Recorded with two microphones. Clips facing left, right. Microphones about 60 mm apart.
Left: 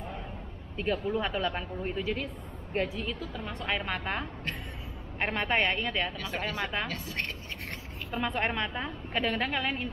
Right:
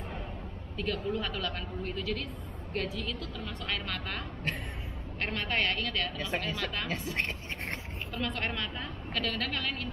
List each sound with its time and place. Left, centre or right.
0.7 s a woman's voice: centre
6.9 s a woman's voice: right
8.1 s a woman's voice: centre